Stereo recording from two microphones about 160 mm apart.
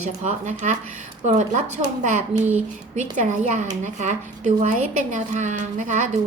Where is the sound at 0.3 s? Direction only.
45° right (ahead or behind).